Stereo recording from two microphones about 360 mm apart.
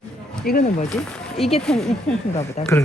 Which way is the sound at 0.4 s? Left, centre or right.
Left.